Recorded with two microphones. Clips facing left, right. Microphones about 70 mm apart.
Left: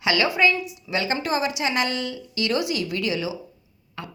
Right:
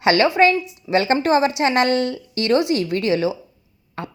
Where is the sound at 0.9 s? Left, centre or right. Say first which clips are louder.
Right 8 dB; right.